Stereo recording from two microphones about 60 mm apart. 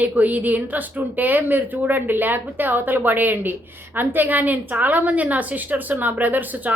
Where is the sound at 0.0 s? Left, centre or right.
Right.